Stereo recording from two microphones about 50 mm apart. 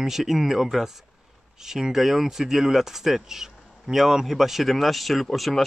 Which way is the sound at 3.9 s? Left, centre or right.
Centre.